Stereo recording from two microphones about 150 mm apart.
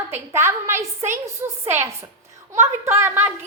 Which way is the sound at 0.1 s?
15° right (ahead or behind).